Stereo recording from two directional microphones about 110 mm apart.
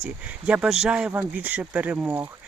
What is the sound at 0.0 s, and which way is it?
Speech, 10° right (ahead or behind).